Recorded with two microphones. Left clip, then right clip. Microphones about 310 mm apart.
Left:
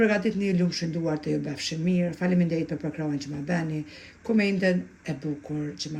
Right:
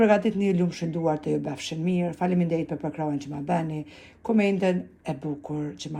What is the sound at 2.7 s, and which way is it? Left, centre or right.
Speech, right.